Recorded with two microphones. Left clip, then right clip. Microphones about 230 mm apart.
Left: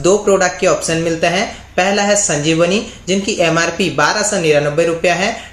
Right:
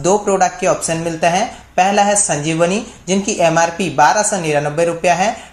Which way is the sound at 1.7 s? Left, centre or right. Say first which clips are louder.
Right 1 dB; right.